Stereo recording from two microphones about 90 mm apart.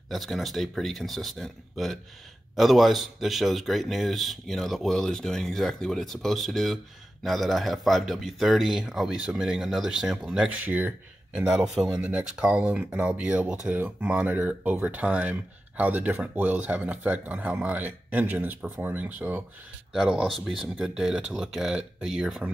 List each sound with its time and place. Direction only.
0.1 s speech: centre (ahead or behind)
10.6 s speech: 20° right (ahead or behind)
11.3 s speech: 5° right (ahead or behind)
19.9 s speech: 5° right (ahead or behind)